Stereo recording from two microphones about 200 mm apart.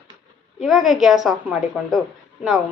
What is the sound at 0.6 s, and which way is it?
A woman's voice, centre (ahead or behind).